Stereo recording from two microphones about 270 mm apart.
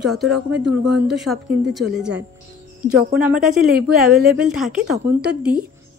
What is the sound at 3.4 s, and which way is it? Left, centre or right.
Speech, centre.